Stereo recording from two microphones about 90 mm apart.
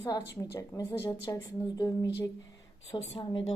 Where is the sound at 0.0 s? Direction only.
35° left (ahead or behind).